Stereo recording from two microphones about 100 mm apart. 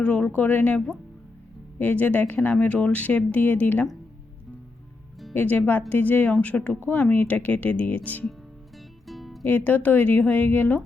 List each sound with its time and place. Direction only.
0.0 s speech: 10° left (ahead or behind)
1.8 s speech: 15° left (ahead or behind)
5.3 s speech: 15° left (ahead or behind)
9.0 s music: centre (ahead or behind)
9.5 s speech: 15° left (ahead or behind)